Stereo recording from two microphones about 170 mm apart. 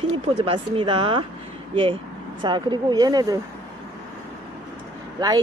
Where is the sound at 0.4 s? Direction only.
30° right (ahead or behind).